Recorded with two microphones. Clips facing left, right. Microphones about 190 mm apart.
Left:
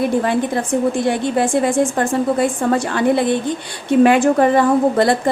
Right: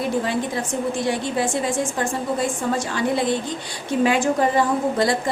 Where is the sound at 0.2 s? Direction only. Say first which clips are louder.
Left 5 dB; 55° left (ahead or behind).